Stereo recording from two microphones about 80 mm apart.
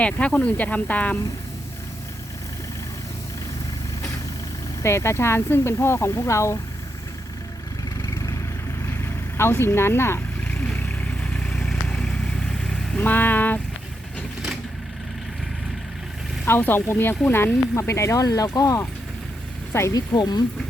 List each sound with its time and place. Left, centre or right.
0.0 s speech: centre
4.8 s speech: left
8.0 s vehicle: left
9.4 s speech: left
11.2 s vehicle: centre
13.0 s vehicle: left
16.5 s speech: left
17.7 s speech: left
19.9 s speech: left